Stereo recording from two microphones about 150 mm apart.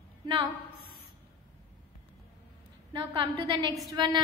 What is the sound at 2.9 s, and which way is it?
A woman's voice, 30° right (ahead or behind).